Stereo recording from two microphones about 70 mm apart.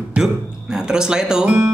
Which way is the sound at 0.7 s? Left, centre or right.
Centre.